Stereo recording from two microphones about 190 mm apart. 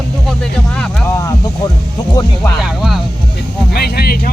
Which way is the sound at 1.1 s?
15° left (ahead or behind).